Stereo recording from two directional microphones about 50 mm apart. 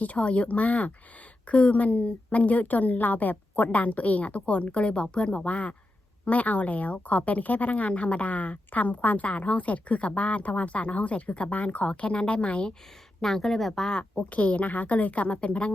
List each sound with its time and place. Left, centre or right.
0.0 s speech: left
13.2 s speech: centre
14.3 s speech: left